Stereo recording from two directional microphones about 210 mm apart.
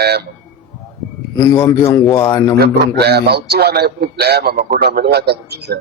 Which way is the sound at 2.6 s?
50° right (ahead or behind).